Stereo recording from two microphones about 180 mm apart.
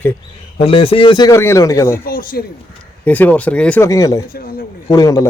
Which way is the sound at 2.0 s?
55° left (ahead or behind).